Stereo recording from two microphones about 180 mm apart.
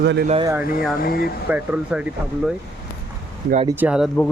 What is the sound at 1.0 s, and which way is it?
Speech, 55° left (ahead or behind).